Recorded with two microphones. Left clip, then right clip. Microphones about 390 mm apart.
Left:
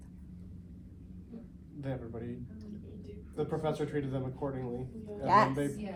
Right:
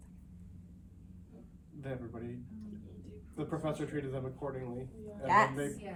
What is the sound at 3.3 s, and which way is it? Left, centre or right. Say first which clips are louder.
Speech: left 4 dB; left.